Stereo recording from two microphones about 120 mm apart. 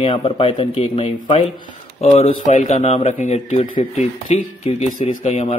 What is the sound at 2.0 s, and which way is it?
Speech, 70° left (ahead or behind).